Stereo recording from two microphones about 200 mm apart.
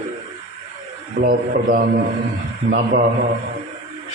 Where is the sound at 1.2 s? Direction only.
45° right (ahead or behind).